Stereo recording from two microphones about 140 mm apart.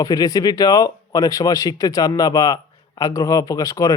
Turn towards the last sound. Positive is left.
turn(degrees=25)  # may be behind; listen again after turning